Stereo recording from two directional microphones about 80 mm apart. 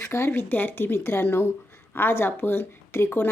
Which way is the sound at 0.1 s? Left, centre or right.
Left.